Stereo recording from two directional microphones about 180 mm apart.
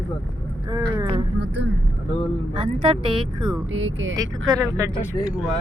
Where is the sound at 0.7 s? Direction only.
20° right (ahead or behind).